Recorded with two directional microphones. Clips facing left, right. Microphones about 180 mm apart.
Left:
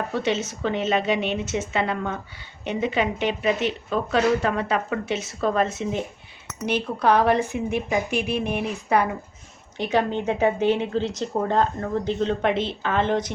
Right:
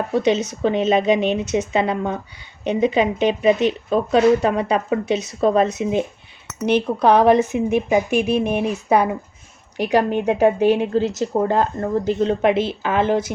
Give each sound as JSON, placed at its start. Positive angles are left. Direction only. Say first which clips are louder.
{"t": 0.1, "sound": "a woman's voice", "louder": "right 6 dB", "side_deg": -15}
{"t": 10.1, "sound": "speech", "louder": "right 5 dB", "side_deg": -10}